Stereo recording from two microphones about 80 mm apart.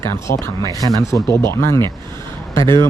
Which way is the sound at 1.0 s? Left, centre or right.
Left.